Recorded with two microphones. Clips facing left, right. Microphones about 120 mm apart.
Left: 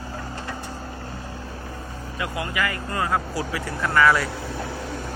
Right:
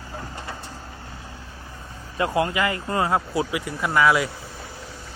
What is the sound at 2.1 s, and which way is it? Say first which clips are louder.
Speech: right 6 dB; 30° right (ahead or behind).